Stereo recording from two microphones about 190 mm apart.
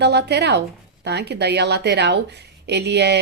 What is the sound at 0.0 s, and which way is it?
Speech, 60° right (ahead or behind).